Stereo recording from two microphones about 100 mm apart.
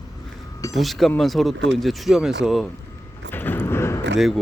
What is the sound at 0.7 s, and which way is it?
Speech, centre (ahead or behind).